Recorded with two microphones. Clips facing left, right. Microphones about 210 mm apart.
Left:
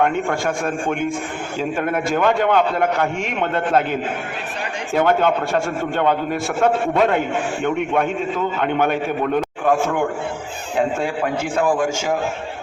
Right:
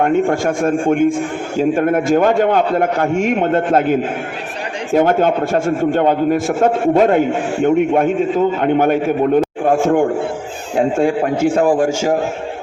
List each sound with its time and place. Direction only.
0.0 s a man's voice: 40° right (ahead or behind)
4.9 s a man's voice: 40° right (ahead or behind)